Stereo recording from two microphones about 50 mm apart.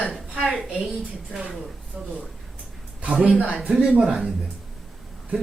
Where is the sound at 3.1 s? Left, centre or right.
Centre.